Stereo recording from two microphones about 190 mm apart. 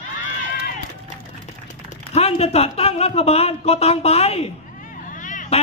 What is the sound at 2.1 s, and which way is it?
Speech, 35° left (ahead or behind).